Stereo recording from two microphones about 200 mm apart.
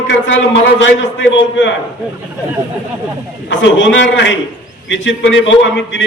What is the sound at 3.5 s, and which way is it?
A man's voice, 65° left (ahead or behind).